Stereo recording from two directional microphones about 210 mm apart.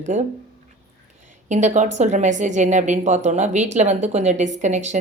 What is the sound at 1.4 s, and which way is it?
Speech, 35° right (ahead or behind).